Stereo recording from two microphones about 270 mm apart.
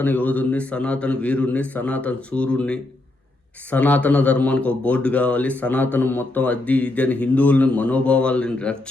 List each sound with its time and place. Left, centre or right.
0.0 s speech: centre